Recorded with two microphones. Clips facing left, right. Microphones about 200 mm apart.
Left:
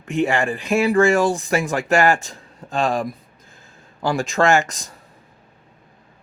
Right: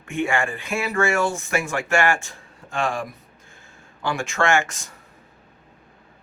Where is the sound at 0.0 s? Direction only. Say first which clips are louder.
Left 4 dB; 35° left (ahead or behind).